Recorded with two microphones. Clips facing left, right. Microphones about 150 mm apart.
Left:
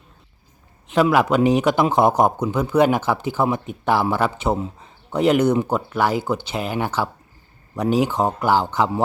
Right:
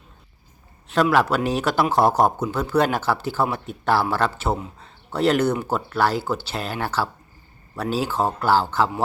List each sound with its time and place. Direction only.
1.1 s speech: 15° left (ahead or behind)